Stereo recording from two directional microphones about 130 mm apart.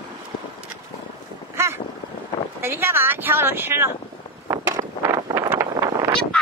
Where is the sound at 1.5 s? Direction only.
20° right (ahead or behind).